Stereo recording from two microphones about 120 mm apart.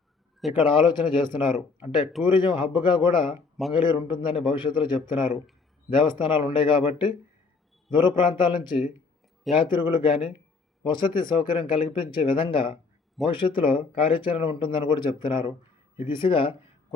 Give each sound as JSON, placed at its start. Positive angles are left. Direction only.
{"t": 0.5, "sound": "speech", "side_deg": 45}